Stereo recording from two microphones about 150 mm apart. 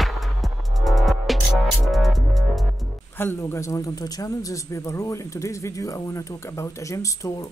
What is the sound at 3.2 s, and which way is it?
A man's voice, 15° left (ahead or behind).